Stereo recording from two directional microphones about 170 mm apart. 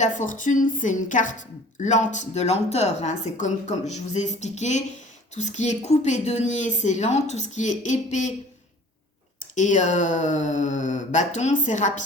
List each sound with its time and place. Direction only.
0.0 s speech: 50° left (ahead or behind)
9.4 s speech: 45° left (ahead or behind)